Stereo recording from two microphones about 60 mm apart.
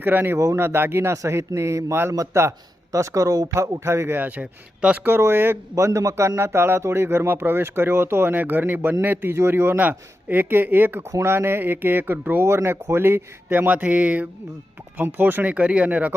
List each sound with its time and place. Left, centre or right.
0.0 s speech: right
1.1 s speech: right
2.9 s speech: right
4.2 s speech: right
5.0 s speech: right
5.7 s speech: right